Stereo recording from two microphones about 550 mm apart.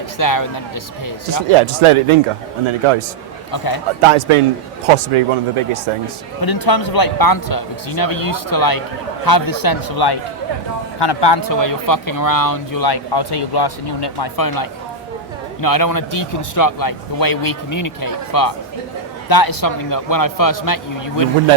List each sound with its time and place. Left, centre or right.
0.2 s speech: left
1.5 s speech: right
3.5 s speech: left
4.0 s a man's voice: right
6.4 s speech: left